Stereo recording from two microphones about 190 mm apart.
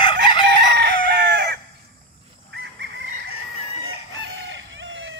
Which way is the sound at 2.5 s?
70° right (ahead or behind).